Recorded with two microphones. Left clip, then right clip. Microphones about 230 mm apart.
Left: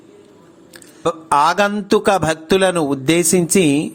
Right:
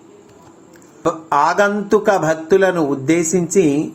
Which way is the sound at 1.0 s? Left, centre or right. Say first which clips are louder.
Left 1 dB; left.